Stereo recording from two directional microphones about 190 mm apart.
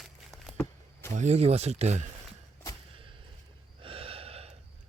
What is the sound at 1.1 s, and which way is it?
Speech, 35° right (ahead or behind).